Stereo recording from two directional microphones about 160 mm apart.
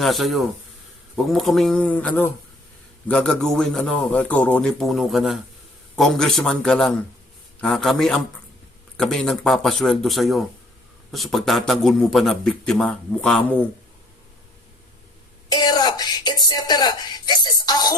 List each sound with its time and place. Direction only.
0.0 s speech: centre (ahead or behind)
15.4 s speech: 25° left (ahead or behind)